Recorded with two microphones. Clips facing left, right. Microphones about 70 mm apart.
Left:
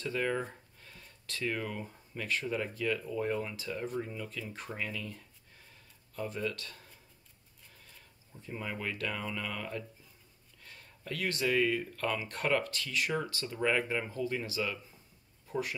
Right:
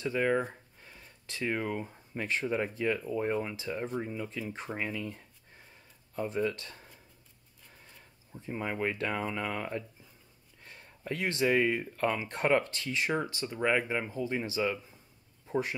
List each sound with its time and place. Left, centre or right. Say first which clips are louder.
0.0 s speech: right 4 dB; centre
6.5 s speech: even; right
8.3 s speech: right 4 dB; right
15.4 s a sound: right 4 dB; right